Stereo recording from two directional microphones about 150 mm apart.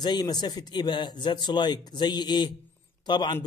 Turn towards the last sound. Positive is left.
turn(degrees=30)  # may be behind; listen again after turning